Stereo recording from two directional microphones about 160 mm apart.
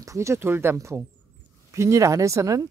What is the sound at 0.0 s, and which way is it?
Speech, 20° right (ahead or behind).